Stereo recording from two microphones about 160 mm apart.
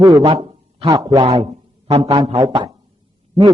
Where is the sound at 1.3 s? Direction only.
40° right (ahead or behind).